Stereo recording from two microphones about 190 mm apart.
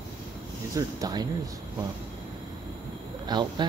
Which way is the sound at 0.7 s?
20° right (ahead or behind).